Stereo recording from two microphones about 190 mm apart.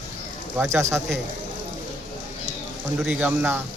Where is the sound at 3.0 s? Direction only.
5° right (ahead or behind).